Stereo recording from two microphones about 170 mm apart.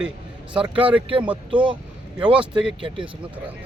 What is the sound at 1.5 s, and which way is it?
Speech, 30° right (ahead or behind).